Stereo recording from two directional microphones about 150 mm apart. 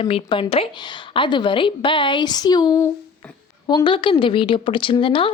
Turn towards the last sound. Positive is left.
turn(degrees=35)  # may be behind; listen again after turning